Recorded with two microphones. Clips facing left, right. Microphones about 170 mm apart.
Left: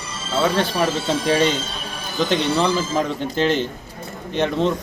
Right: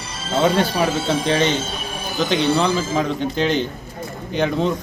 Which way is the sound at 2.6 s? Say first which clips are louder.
Even; 5° left (ahead or behind).